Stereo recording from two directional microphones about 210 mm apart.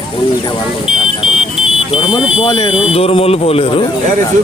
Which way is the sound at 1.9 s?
25° left (ahead or behind).